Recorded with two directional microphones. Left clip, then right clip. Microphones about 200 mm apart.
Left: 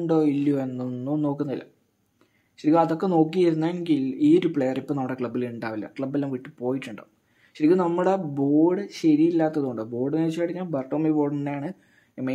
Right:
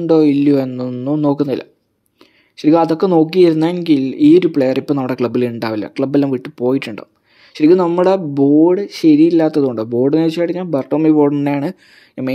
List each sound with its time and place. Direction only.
0.0 s speech: 40° right (ahead or behind)
4.4 s speech: 35° right (ahead or behind)
4.6 s speech: 45° right (ahead or behind)